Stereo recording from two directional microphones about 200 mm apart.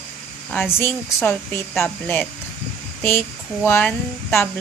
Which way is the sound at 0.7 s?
10° left (ahead or behind).